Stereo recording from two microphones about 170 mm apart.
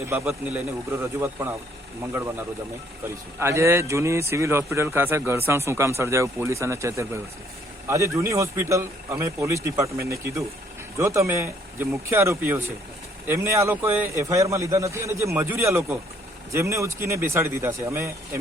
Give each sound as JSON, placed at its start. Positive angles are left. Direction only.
{"t": 0.3, "sound": "speech", "side_deg": -5}
{"t": 3.4, "sound": "speech", "side_deg": -15}